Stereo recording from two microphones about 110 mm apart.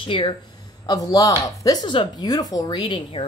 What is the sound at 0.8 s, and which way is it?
Speech, 35° left (ahead or behind).